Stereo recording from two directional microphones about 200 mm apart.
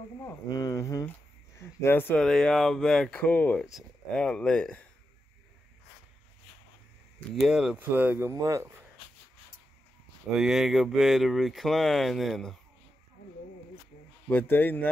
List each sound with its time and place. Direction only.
0.2 s speech: 15° left (ahead or behind)
7.2 s speech: centre (ahead or behind)
10.3 s speech: centre (ahead or behind)
14.3 s speech: 10° left (ahead or behind)